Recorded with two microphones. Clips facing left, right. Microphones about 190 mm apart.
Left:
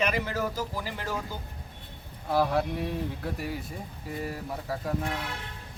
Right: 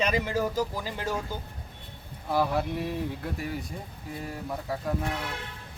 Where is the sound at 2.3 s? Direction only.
Centre (ahead or behind).